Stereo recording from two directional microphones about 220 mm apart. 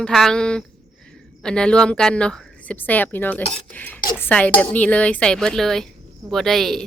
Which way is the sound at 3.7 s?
5° left (ahead or behind).